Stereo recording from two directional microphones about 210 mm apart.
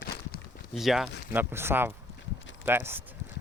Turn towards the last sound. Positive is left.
turn(degrees=-10)  # may be behind; listen again after turning